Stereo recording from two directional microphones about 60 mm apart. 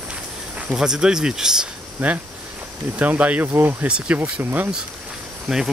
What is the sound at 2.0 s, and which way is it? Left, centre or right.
Speech, right.